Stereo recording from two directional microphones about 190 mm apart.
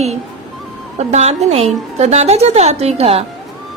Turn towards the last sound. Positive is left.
turn(degrees=-30)  # may be behind; listen again after turning